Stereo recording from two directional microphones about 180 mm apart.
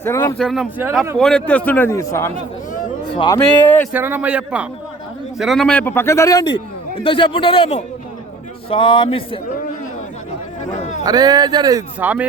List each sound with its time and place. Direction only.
0.0 s a man's voice: 15° left (ahead or behind)
0.3 s a man's voice: centre (ahead or behind); by 3.6 s 25° left (ahead or behind)
3.9 s a man's voice: 10° right (ahead or behind); by 9.4 s 30° left (ahead or behind)
10.8 s a sound: 40° left (ahead or behind)
11.0 s speech: 20° right (ahead or behind)
11.9 s a man's voice: 10° right (ahead or behind)